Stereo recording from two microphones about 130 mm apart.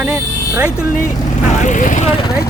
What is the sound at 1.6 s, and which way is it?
Speech, 75° left (ahead or behind).